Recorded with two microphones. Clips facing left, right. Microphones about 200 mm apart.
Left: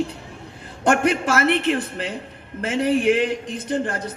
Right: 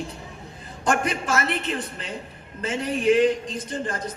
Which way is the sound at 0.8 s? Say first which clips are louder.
Left 5 dB; 65° left (ahead or behind).